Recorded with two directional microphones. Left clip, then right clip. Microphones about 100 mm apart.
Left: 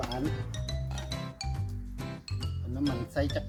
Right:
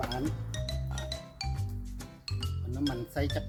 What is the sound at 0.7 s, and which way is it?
Music, 25° right (ahead or behind).